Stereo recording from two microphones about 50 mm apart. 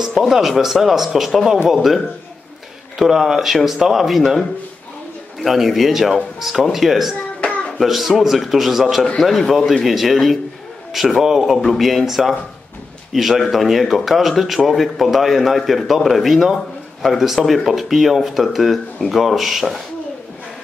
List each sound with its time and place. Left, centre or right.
0.2 s speech: centre
3.0 s speech: centre
7.4 s child singing: left
7.8 s speech: centre